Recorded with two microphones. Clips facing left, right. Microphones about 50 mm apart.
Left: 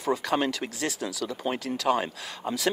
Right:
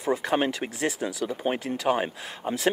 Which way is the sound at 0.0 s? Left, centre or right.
Centre.